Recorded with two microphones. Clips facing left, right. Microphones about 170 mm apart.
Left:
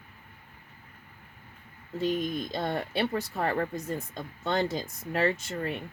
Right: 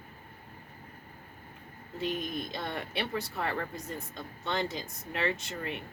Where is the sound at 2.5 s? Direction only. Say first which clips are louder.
Left 6 dB; 45° left (ahead or behind).